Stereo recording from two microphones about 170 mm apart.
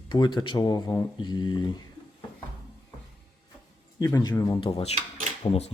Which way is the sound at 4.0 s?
25° left (ahead or behind).